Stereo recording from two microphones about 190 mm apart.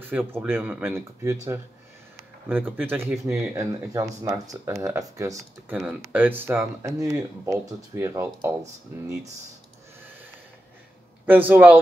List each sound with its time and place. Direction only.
0.0 s speech: 10° right (ahead or behind)
11.2 s speech: 10° right (ahead or behind)